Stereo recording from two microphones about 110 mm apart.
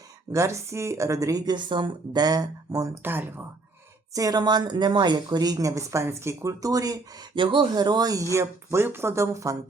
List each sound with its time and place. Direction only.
0.3 s speech: 25° right (ahead or behind)
3.0 s speech: 20° right (ahead or behind)
4.1 s speech: 35° right (ahead or behind)
7.3 s speech: 45° right (ahead or behind); by 9.6 s 30° right (ahead or behind)